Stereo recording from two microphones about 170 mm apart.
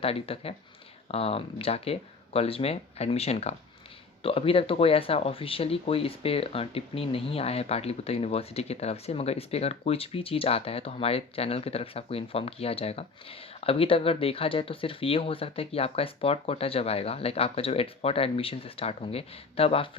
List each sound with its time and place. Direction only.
0.0 s speech: 35° left (ahead or behind)